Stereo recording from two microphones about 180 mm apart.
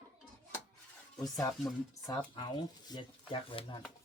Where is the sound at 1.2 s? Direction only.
20° left (ahead or behind).